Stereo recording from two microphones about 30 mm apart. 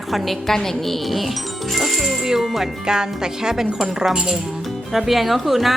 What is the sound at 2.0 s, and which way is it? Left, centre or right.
Speech, centre.